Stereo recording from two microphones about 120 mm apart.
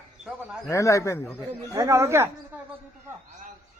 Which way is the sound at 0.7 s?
25° left (ahead or behind).